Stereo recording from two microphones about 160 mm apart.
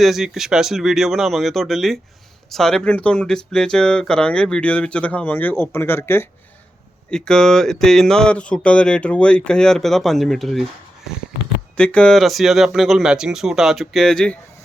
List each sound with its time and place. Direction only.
0.0 s speech: centre (ahead or behind); by 6.2 s 15° left (ahead or behind)
7.1 s speech: 5° left (ahead or behind)
11.8 s speech: 5° left (ahead or behind)